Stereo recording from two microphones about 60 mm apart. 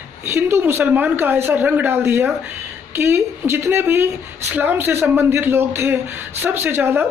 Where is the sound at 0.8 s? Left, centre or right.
Right.